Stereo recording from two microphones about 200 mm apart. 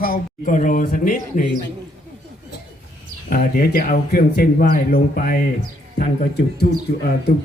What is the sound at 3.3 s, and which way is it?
Speech, 45° left (ahead or behind).